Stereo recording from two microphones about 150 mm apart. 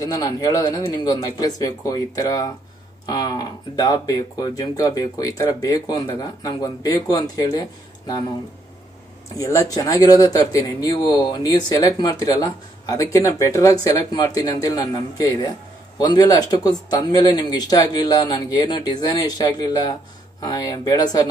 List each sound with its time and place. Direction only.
0.0 s speech: 25° left (ahead or behind)
9.4 s speech: 20° left (ahead or behind)